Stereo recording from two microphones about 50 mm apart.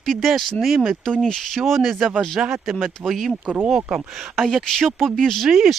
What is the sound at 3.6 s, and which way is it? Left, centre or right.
Speech, centre.